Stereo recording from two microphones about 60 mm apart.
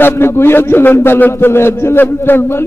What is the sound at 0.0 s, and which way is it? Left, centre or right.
A man's voice, left.